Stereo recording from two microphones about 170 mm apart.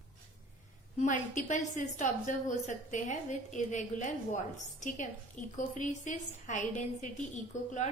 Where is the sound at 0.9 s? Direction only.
50° left (ahead or behind).